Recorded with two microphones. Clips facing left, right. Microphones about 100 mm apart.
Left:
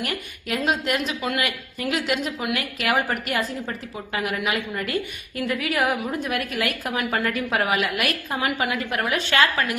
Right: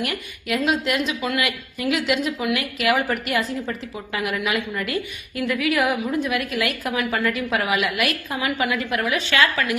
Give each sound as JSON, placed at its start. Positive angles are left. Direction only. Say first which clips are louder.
{"t": 0.0, "sound": "a woman's voice", "louder": "right 2 dB", "side_deg": 40}